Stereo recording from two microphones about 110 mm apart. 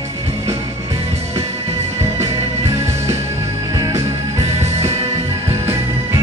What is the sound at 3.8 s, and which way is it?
Music, 30° right (ahead or behind).